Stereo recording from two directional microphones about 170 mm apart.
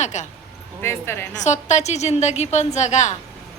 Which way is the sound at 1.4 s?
45° left (ahead or behind).